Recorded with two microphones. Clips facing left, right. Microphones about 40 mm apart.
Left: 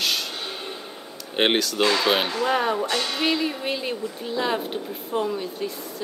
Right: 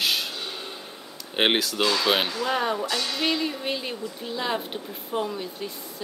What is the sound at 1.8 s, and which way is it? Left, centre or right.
Speech, left.